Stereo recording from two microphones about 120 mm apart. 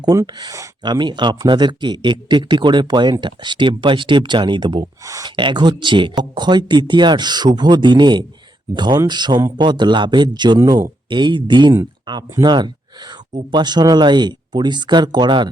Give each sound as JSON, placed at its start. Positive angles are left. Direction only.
{"t": 0.0, "sound": "speech", "side_deg": -30}